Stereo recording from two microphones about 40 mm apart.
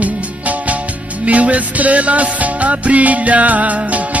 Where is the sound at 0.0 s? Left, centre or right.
Right.